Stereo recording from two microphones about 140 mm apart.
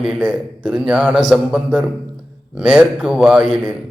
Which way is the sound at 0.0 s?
5° right (ahead or behind).